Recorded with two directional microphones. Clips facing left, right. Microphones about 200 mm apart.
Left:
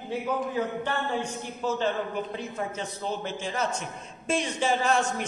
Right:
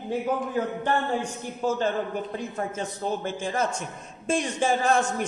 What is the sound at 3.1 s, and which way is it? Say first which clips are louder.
Speech: right 3 dB; 50° right (ahead or behind).